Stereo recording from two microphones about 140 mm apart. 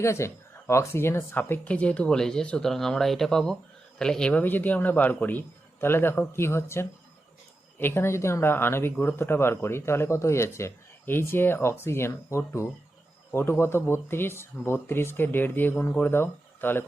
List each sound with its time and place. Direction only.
0.0 s speech: 20° left (ahead or behind)